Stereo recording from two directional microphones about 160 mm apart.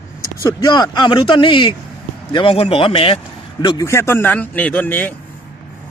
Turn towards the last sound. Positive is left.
turn(degrees=10)  # may be behind; listen again after turning